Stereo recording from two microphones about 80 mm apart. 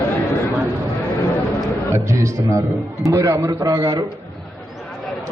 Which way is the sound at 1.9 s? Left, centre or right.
Right.